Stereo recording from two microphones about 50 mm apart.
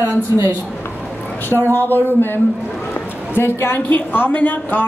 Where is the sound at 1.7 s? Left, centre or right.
Left.